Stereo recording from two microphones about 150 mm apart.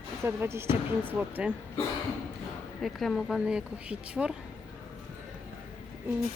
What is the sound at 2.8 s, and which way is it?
A woman's voice, centre (ahead or behind).